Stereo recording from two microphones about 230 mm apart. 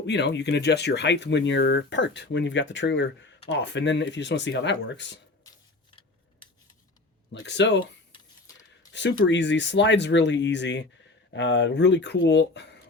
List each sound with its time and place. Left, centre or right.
0.0 s speech: left
7.3 s speech: left
8.1 s mechanisms: centre
8.9 s speech: left